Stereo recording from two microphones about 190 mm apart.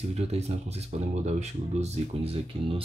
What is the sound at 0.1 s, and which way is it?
Speech, 35° right (ahead or behind).